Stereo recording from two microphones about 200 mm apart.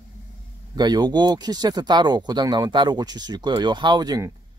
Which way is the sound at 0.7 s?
20° right (ahead or behind).